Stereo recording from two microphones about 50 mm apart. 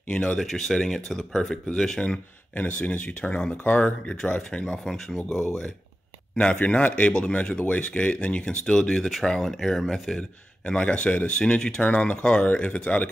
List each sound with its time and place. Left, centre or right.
0.1 s speech: centre
0.4 s speech: centre
2.5 s speech: left
4.1 s speech: centre
4.8 s speech: centre
6.8 s speech: left; by 10.2 s centre
10.6 s speech: centre